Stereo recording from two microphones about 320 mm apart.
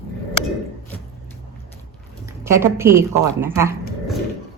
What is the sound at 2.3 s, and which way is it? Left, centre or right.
Speech, centre.